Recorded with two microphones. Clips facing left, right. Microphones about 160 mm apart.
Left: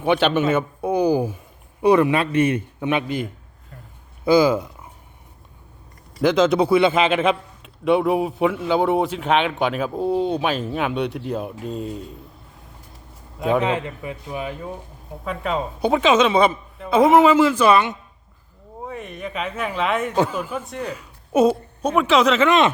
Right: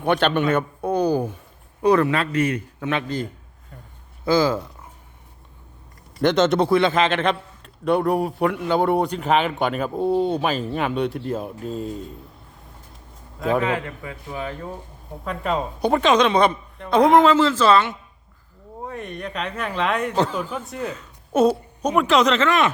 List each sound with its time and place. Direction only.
0.0 s a man's voice: 5° left (ahead or behind); by 2.9 s 25° left (ahead or behind)
4.3 s a man's voice: 15° left (ahead or behind)
6.2 s a man's voice: centre (ahead or behind)
13.6 s a man's voice: 20° left (ahead or behind)
18.9 s a man's voice: centre (ahead or behind)
20.9 s a sound: 10° left (ahead or behind)
21.8 s a man's voice: 5° left (ahead or behind)
22.4 s a man's voice: 25° left (ahead or behind)